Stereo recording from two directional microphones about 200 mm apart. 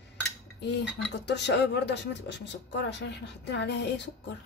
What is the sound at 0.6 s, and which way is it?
A woman's voice, 55° left (ahead or behind).